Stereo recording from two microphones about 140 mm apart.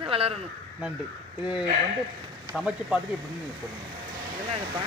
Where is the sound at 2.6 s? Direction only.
5° right (ahead or behind).